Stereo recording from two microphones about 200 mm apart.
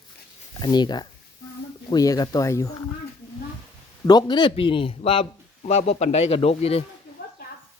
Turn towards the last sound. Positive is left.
turn(degrees=30)  # may be behind; listen again after turning